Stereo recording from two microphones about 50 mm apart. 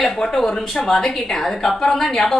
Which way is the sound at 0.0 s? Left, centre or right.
Centre.